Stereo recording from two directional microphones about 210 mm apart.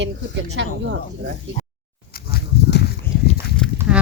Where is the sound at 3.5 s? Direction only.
5° left (ahead or behind).